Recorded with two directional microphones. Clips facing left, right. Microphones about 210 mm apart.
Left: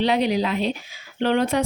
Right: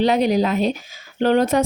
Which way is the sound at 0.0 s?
45° right (ahead or behind).